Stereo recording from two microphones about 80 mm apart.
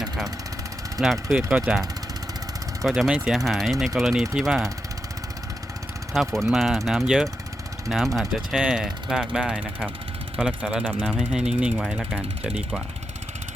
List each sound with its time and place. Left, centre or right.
0.9 s speech: centre
1.5 s ratchet: centre
2.8 s speech: centre
6.1 s speech: centre
8.6 s ratchet: centre